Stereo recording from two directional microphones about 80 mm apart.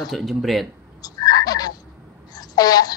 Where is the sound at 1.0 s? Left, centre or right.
Left.